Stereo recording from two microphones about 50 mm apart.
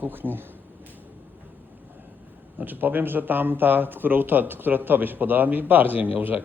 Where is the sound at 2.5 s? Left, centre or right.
Right.